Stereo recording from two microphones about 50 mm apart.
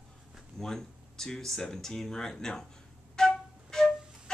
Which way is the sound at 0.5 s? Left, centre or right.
Centre.